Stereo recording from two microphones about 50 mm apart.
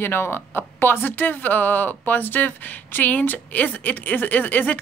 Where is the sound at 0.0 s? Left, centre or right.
Left.